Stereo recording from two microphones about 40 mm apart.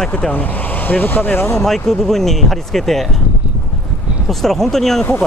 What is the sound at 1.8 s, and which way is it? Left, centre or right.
Speech, centre.